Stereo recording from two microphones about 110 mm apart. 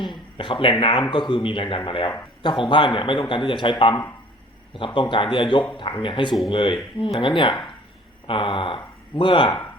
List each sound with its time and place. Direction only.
0.0 s speech: 45° left (ahead or behind)
4.9 s speech: 50° left (ahead or behind)